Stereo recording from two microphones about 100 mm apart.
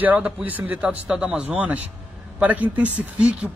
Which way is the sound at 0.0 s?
15° right (ahead or behind).